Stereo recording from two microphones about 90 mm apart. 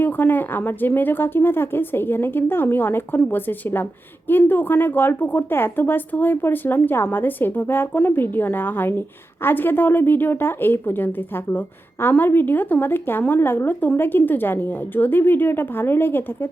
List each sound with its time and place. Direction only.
0.0 s a woman's voice: 20° left (ahead or behind)